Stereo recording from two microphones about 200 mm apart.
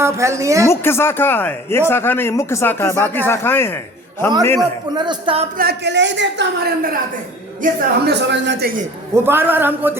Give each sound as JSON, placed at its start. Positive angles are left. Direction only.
{"t": 0.0, "sound": "a man's voice", "side_deg": -15}
{"t": 0.7, "sound": "a man's voice", "side_deg": 10}
{"t": 4.9, "sound": "speech", "side_deg": -25}
{"t": 5.5, "sound": "a man's voice", "side_deg": -55}
{"t": 9.1, "sound": "a man's voice", "side_deg": -10}